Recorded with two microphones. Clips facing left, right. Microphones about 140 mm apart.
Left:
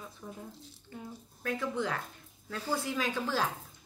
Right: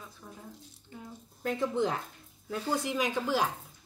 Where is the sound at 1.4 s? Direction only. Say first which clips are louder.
Right 4 dB; 25° right (ahead or behind).